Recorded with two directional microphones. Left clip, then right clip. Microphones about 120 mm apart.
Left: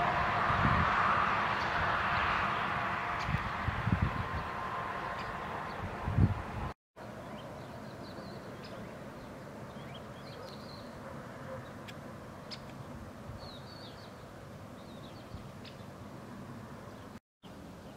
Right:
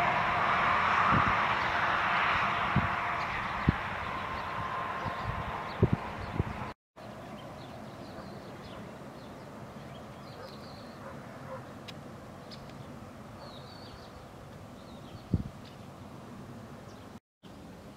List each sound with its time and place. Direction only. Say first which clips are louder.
0.0 s vehicle: right 2 dB; 20° right (ahead or behind)